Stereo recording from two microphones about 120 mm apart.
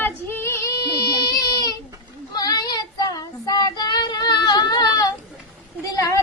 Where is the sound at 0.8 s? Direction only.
35° left (ahead or behind).